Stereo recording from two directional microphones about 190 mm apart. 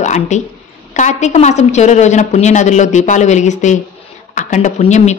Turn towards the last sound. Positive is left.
turn(degrees=40)  # may be behind; listen again after turning